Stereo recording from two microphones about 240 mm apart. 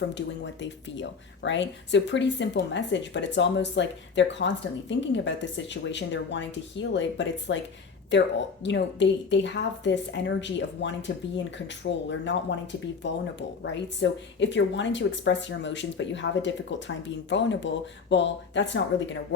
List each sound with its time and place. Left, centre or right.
0.1 s speech: left